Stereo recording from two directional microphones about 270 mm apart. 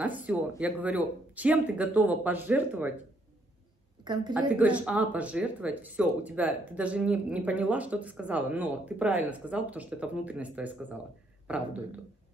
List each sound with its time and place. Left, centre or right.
0.0 s speech: centre
4.0 s a woman's voice: centre
4.3 s speech: centre